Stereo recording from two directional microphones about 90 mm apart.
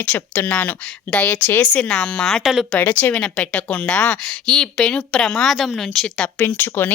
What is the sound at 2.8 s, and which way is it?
A woman's voice, 20° left (ahead or behind).